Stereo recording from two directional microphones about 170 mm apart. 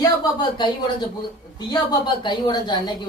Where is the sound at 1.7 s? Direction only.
25° left (ahead or behind).